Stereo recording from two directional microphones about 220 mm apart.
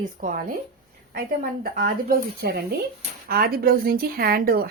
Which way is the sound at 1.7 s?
40° right (ahead or behind).